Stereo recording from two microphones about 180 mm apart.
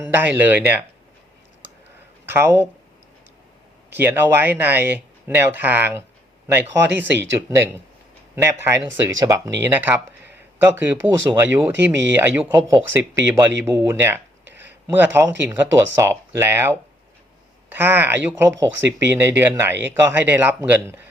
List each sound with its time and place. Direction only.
0.1 s speech: 10° right (ahead or behind)
2.2 s speech: 10° right (ahead or behind)
3.9 s speech: 10° right (ahead or behind)
14.5 s a sound: 10° right (ahead or behind)
15.4 s speech: 15° right (ahead or behind)
18.8 s speech: 80° right
19.1 s speech: 15° right (ahead or behind)